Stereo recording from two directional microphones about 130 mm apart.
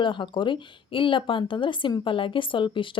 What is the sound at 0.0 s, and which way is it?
Speech, 40° left (ahead or behind).